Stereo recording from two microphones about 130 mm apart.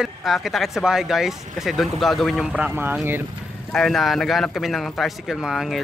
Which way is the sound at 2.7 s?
15° right (ahead or behind).